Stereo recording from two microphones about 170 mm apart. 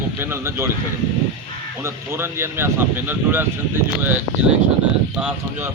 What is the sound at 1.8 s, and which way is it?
Speech, 15° right (ahead or behind).